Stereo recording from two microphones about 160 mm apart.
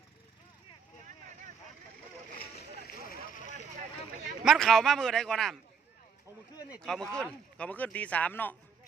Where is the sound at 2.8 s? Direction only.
65° left (ahead or behind).